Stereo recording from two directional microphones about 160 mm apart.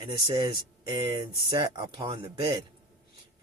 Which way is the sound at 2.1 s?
35° right (ahead or behind).